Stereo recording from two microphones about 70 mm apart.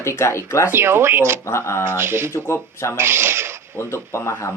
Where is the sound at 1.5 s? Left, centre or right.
Left.